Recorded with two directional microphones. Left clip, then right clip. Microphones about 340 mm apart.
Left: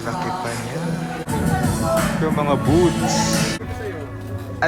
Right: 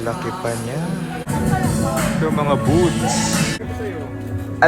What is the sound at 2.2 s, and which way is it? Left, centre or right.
Speech, centre.